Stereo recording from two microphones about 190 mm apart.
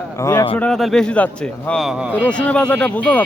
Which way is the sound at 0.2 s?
15° left (ahead or behind).